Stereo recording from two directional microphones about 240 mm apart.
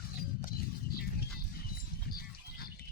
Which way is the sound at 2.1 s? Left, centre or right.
Left.